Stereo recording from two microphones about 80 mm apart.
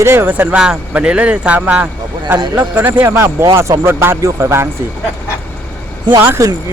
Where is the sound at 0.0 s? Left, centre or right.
Right.